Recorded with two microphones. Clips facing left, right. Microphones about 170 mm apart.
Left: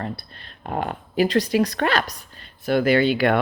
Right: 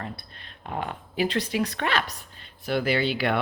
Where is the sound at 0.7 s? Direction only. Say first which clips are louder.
Left 5 dB; 50° left (ahead or behind).